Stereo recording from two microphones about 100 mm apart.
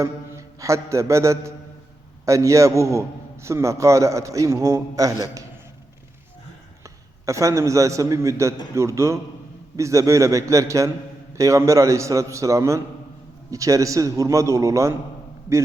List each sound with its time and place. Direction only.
0.3 s a man's voice: 30° right (ahead or behind)
6.8 s a man's voice: 30° right (ahead or behind)